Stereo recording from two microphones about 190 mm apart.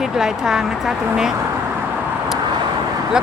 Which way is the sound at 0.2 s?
5° right (ahead or behind).